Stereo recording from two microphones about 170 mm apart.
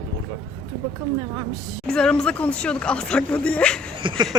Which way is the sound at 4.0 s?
30° right (ahead or behind).